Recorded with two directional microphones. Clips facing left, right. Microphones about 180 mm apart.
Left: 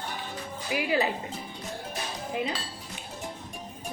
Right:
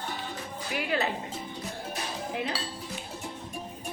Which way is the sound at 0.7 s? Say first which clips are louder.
Left 3 dB; 5° left (ahead or behind).